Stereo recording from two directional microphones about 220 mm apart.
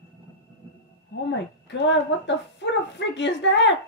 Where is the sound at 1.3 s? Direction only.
55° left (ahead or behind).